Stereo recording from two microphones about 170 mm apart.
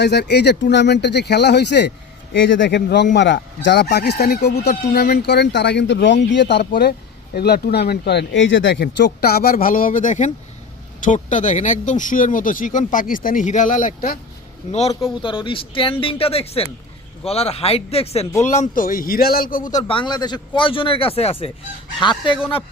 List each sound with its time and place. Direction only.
0.0 s speech: 75° left (ahead or behind)
7.3 s speech: 70° left (ahead or behind); by 9.0 s 90° left
9.0 s speech: 65° left (ahead or behind)
14.7 s a man's voice: 40° left (ahead or behind); by 19.8 s 55° left (ahead or behind)
19.9 s speech: 30° left (ahead or behind)